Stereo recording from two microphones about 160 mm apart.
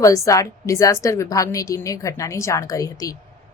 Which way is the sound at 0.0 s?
20° left (ahead or behind).